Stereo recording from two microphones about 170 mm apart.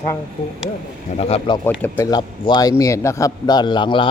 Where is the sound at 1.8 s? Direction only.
20° left (ahead or behind).